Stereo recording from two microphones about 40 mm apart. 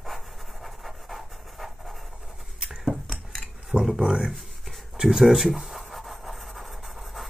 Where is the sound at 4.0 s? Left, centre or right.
Centre.